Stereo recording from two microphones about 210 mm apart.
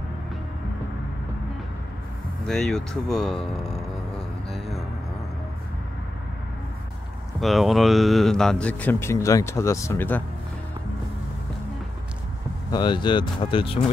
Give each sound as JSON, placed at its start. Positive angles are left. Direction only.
{"t": 2.4, "sound": "speech", "side_deg": 0}
{"t": 7.3, "sound": "speech", "side_deg": 0}
{"t": 12.7, "sound": "speech", "side_deg": 20}